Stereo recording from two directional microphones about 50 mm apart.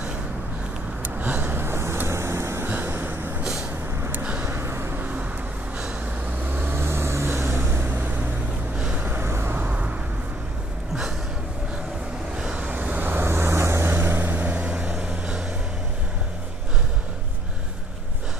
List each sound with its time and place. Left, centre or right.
1.0 s vehicle: right
2.6 s vehicle: right
4.2 s a sound: right
4.5 s vehicle: right
4.9 s vehicle: right
6.5 s vehicle: right
6.8 s vehicle: right
8.7 s vehicle: right
9.0 s vehicle: right
9.7 s vehicle: right
12.5 s vehicle: right
13.2 s vehicle: right